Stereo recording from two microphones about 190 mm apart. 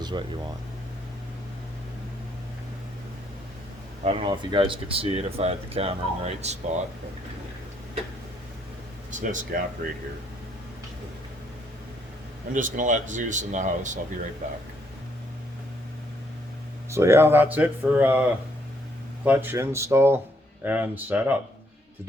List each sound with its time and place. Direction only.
0.0 s speech: 25° right (ahead or behind)
4.0 s speech: 30° right (ahead or behind)
9.1 s speech: 40° right (ahead or behind)
12.5 s speech: 45° right (ahead or behind)
16.9 s speech: 15° right (ahead or behind)